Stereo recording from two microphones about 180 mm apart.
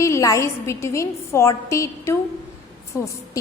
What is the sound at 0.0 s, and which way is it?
A woman's voice, 15° left (ahead or behind).